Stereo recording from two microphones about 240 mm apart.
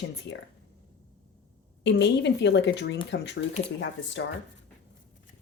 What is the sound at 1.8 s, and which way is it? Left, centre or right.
Speech, left.